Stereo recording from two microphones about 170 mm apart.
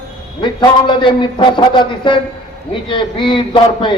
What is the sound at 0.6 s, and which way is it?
A man's voice, 30° left (ahead or behind).